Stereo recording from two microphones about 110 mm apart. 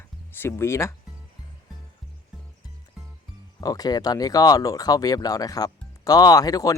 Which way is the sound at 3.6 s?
35° left (ahead or behind).